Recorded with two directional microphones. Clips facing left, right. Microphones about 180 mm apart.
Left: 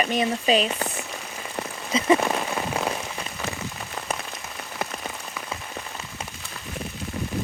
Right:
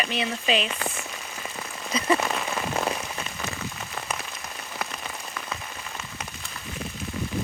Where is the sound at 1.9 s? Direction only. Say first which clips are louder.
Left 4 dB; 25° left (ahead or behind).